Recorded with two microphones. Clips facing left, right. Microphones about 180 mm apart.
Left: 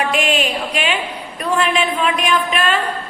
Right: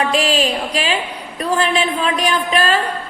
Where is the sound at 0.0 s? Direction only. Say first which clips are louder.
Right 1 dB; 30° right (ahead or behind).